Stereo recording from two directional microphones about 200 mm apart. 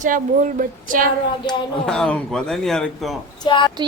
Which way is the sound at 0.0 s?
40° right (ahead or behind).